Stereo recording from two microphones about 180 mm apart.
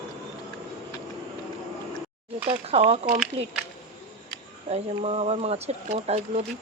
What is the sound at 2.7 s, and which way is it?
Speech, 30° right (ahead or behind).